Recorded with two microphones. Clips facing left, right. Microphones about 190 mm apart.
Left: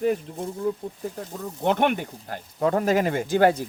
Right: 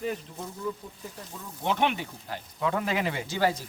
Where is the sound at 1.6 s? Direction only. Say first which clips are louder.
Left 5 dB; 50° left (ahead or behind).